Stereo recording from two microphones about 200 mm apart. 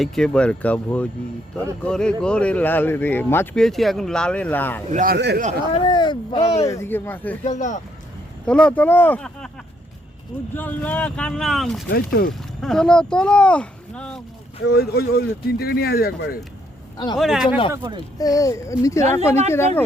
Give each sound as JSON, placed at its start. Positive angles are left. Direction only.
{"t": 0.0, "sound": "speech", "side_deg": 5}
{"t": 4.9, "sound": "a man's voice", "side_deg": -40}
{"t": 5.1, "sound": "a man's voice", "side_deg": -55}
{"t": 5.7, "sound": "speech", "side_deg": 25}
{"t": 6.7, "sound": "speech", "side_deg": 10}
{"t": 7.4, "sound": "speech", "side_deg": 35}
{"t": 8.4, "sound": "speech", "side_deg": 5}
{"t": 10.5, "sound": "speech", "side_deg": 10}
{"t": 11.9, "sound": "speech", "side_deg": 50}
{"t": 12.3, "sound": "speech", "side_deg": 0}
{"t": 14.7, "sound": "speech", "side_deg": 50}
{"t": 17.2, "sound": "speech", "side_deg": 0}
{"t": 18.2, "sound": "speech", "side_deg": 15}